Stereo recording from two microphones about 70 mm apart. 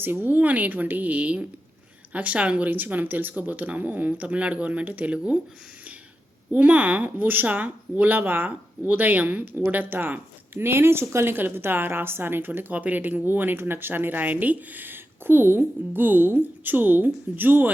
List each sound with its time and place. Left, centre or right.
0.0 s speech: right
6.5 s speech: right